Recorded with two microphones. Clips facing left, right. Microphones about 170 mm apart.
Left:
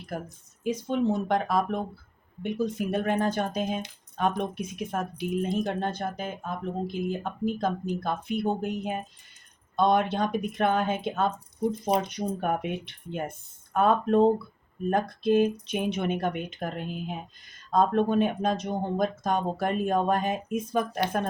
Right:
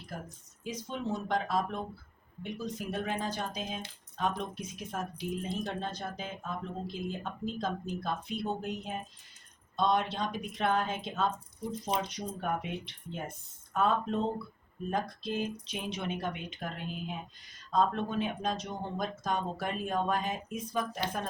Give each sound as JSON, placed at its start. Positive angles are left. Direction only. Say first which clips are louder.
{"t": 0.6, "sound": "speech", "louder": "left 10 dB", "side_deg": 60}